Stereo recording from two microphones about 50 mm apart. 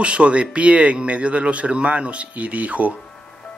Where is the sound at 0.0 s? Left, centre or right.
Right.